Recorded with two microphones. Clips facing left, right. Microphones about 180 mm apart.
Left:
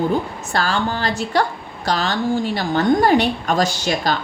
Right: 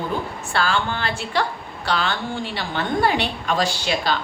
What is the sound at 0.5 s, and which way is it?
Speech, 40° left (ahead or behind).